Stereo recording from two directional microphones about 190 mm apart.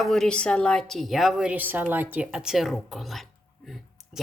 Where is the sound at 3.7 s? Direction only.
Centre (ahead or behind).